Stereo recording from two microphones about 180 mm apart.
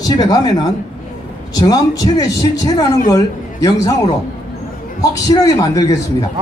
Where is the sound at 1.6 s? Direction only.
20° left (ahead or behind).